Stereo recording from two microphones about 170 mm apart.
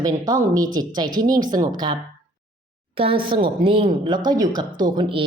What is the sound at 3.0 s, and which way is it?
Speech, 30° right (ahead or behind).